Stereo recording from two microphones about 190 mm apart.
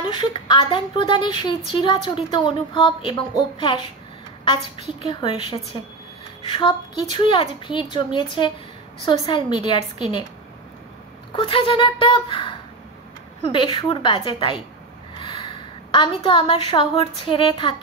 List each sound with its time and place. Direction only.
0.0 s a woman's voice: 25° left (ahead or behind)
5.1 s a woman's voice: 25° left (ahead or behind)
11.3 s a woman's voice: 30° left (ahead or behind)